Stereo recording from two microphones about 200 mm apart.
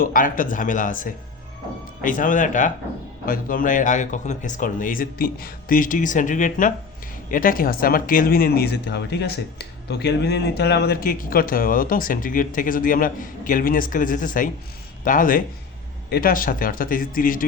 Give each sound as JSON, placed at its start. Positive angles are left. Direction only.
{"t": 0.0, "sound": "speech", "side_deg": 45}